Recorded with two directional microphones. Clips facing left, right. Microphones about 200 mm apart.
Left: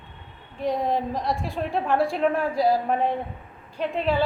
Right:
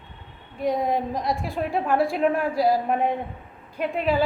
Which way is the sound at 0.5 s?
10° right (ahead or behind).